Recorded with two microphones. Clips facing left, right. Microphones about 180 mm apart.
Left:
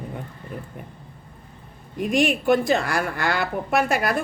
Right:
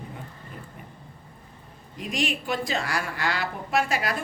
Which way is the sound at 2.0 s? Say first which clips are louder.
Left 8 dB; 55° left (ahead or behind).